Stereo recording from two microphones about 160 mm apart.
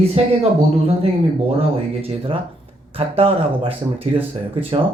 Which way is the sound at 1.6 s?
35° right (ahead or behind).